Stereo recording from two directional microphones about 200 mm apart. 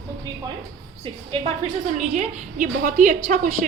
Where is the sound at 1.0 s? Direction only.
30° right (ahead or behind).